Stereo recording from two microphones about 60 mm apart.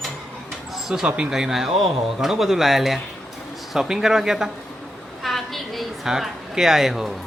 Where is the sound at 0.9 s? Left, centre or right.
Centre.